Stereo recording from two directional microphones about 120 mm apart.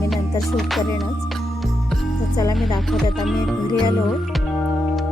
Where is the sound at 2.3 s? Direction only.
30° left (ahead or behind).